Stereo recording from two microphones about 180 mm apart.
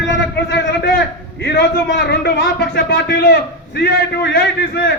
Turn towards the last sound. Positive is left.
turn(degrees=65)  # may be behind; listen again after turning